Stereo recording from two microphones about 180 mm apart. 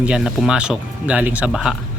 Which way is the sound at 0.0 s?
5° right (ahead or behind).